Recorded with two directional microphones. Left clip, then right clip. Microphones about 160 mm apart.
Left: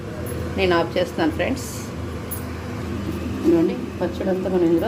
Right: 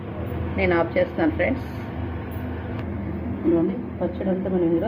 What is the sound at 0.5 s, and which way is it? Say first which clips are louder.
A woman's voice: left 1 dB; 20° left (ahead or behind).